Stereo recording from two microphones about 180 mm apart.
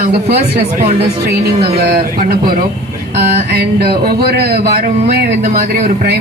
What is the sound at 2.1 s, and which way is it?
Speech, 50° right (ahead or behind).